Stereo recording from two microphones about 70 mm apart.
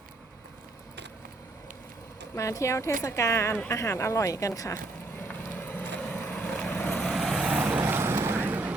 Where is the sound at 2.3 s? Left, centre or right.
Left.